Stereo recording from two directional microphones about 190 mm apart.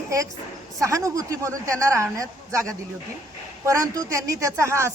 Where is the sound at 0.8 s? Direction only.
15° right (ahead or behind).